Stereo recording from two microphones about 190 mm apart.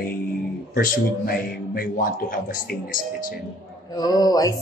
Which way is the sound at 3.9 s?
20° left (ahead or behind).